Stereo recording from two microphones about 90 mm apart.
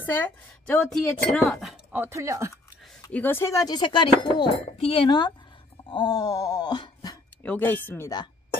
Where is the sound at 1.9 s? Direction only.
30° right (ahead or behind).